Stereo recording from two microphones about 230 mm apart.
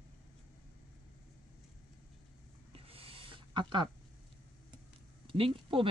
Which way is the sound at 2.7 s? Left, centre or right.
Right.